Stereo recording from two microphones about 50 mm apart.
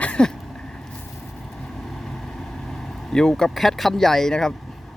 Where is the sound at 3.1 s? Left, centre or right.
Centre.